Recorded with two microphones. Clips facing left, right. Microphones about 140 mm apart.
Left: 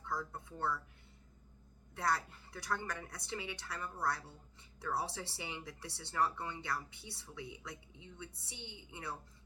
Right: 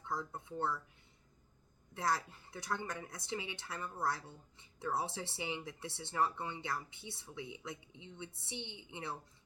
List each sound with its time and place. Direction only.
0.0 s speech: 20° right (ahead or behind)
1.9 s speech: 20° right (ahead or behind)